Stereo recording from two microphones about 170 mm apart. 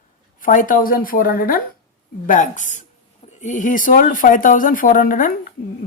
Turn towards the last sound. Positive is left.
turn(degrees=55)  # may be behind; listen again after turning